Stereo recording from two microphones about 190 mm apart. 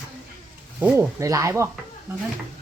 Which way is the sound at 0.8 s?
15° right (ahead or behind).